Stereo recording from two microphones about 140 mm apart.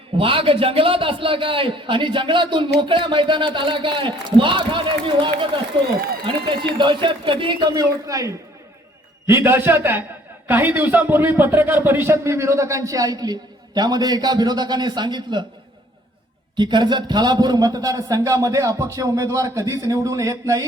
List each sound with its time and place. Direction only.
0.2 s a man's voice: 40° right (ahead or behind)
16.6 s a man's voice: 30° right (ahead or behind)